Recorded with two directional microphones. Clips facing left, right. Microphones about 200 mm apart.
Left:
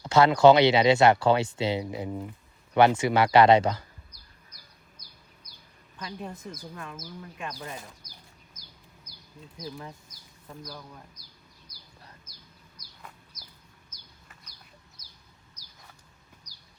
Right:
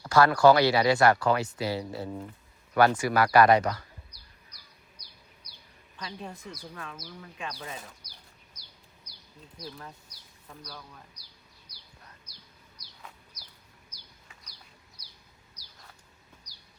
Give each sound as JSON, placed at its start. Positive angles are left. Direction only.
{"t": 0.0, "sound": "speech", "side_deg": 20}
{"t": 4.1, "sound": "bird", "side_deg": 45}
{"t": 6.7, "sound": "speech", "side_deg": 5}
{"t": 8.0, "sound": "bird", "side_deg": 50}
{"t": 9.6, "sound": "speech", "side_deg": 15}
{"t": 13.3, "sound": "chicken", "side_deg": 50}